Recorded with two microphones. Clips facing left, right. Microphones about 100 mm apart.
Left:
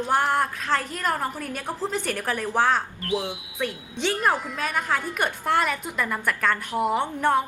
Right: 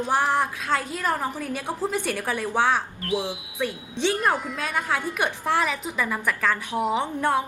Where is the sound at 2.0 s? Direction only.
15° right (ahead or behind).